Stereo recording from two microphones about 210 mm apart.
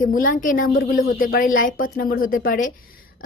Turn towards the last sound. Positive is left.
turn(degrees=40)  # may be behind; listen again after turning